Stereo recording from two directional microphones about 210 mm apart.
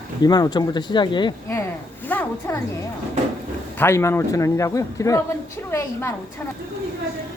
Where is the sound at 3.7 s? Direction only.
10° left (ahead or behind).